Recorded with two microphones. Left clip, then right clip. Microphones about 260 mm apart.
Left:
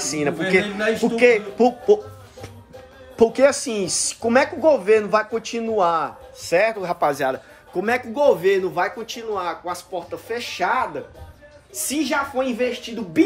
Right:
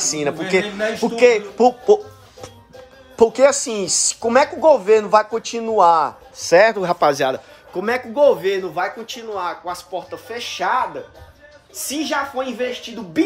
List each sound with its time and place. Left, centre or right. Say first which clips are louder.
0.0 s speech: right 1 dB; centre
3.2 s speech: right 2 dB; centre
6.4 s a man's voice: right 6 dB; right
7.7 s speech: right 1 dB; centre
11.9 s speech: even; centre